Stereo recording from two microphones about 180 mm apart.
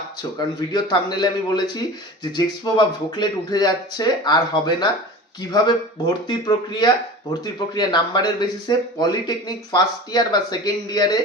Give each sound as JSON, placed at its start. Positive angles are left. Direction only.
{"t": 0.2, "sound": "speech", "side_deg": 20}